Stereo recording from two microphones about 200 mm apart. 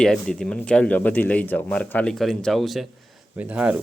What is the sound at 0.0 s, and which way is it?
Speech, 5° left (ahead or behind).